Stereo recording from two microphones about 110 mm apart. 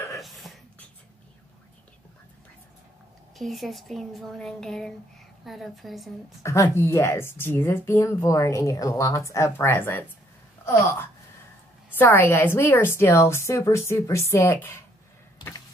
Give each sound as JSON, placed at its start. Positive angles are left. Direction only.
{"t": 0.2, "sound": "a sound", "side_deg": 0}
{"t": 3.3, "sound": "speech", "side_deg": 0}
{"t": 6.4, "sound": "speech", "side_deg": 25}